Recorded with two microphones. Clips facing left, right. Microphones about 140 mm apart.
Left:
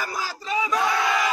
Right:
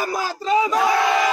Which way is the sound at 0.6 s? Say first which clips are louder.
Right 5 dB; 25° right (ahead or behind).